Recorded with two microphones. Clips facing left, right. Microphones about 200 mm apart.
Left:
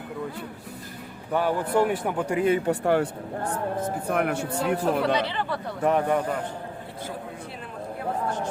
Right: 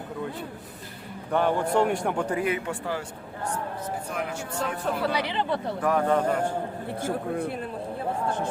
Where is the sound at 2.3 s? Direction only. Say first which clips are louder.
Left 8 dB; 25° left (ahead or behind).